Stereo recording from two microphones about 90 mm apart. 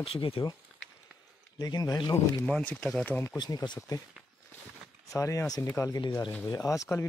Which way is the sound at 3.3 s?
50° left (ahead or behind).